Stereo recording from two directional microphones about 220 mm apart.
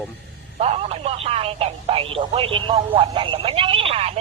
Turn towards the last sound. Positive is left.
turn(degrees=-25)  # may be behind; listen again after turning